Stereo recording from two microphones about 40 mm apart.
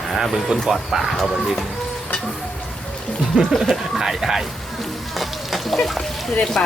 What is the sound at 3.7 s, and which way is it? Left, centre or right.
Speech, centre.